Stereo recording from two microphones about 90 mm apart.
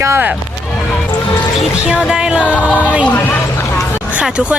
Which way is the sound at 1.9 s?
10° right (ahead or behind).